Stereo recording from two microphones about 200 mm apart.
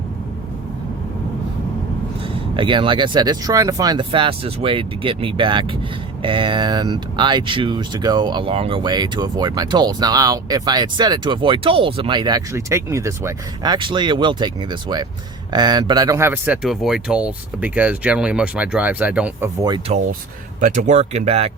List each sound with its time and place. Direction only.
2.2 s speech: 25° right (ahead or behind); by 19.5 s 5° right (ahead or behind)
19.9 s speech: 35° right (ahead or behind)